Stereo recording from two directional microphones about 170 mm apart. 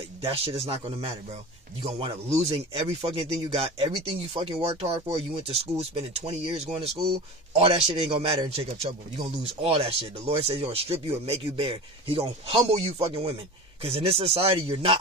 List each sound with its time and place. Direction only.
0.2 s speech: 35° right (ahead or behind)